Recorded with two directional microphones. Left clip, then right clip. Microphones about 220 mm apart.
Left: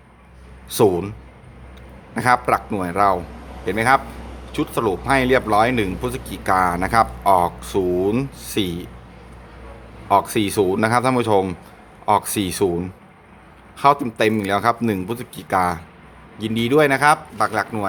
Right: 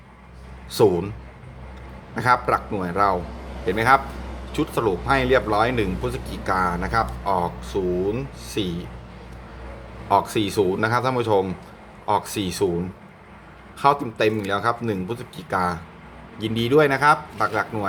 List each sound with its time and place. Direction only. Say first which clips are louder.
0.7 s speech: left 1 dB; 20° left (ahead or behind)
2.1 s speech: left 2 dB; 20° left (ahead or behind)
10.1 s speech: left 3 dB; 20° left (ahead or behind)
13.7 s speech: left 3 dB; 25° left (ahead or behind)
16.4 s speech: left 1 dB; 15° left (ahead or behind)